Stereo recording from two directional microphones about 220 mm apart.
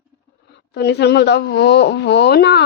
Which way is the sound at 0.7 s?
50° left (ahead or behind).